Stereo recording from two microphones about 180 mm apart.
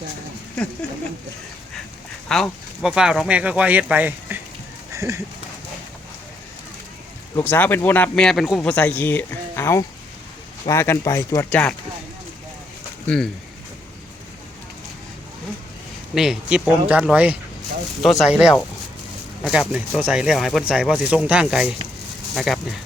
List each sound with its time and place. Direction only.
0.5 s speech: 5° left (ahead or behind)
2.3 s speech: centre (ahead or behind)
4.9 s a sound: 15° right (ahead or behind)
7.3 s speech: 10° left (ahead or behind)
16.1 s speech: 5° right (ahead or behind)